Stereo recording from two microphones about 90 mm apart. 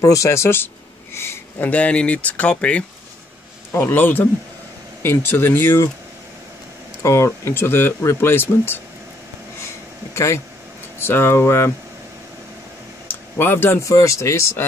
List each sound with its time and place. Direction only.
0.0 s speech: 35° left (ahead or behind)
1.1 s a sound: 30° left (ahead or behind)
1.7 s speech: 15° left (ahead or behind)
3.7 s speech: 25° left (ahead or behind)
7.0 s speech: 35° left (ahead or behind)
10.1 s speech: 30° left (ahead or behind)
13.1 s speech: 25° left (ahead or behind)